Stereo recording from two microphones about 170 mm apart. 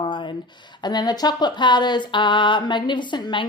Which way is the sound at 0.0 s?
25° left (ahead or behind).